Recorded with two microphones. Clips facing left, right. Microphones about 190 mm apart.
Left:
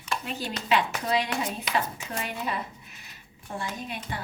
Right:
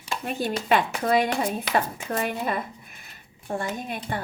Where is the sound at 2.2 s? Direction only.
50° right (ahead or behind).